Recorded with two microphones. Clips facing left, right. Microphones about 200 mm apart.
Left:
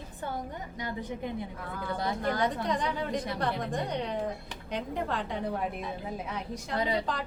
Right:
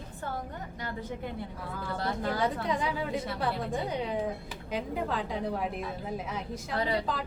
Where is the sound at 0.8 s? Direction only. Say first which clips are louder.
Left 2 dB; 15° left (ahead or behind).